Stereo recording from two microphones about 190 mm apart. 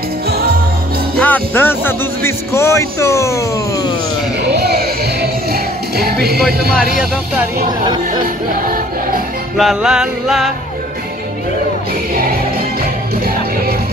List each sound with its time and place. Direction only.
1.2 s speech: 10° left (ahead or behind)
4.5 s music: 55° right (ahead or behind)
9.6 s music: centre (ahead or behind)